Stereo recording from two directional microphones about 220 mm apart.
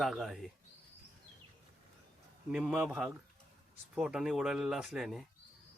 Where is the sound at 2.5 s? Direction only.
5° right (ahead or behind).